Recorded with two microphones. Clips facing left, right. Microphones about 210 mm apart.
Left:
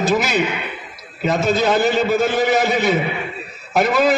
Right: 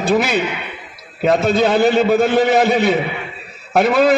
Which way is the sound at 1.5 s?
55° right (ahead or behind).